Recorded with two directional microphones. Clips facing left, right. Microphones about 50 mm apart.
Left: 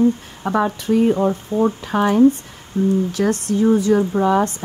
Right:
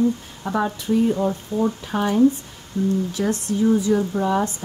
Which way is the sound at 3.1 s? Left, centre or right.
Left.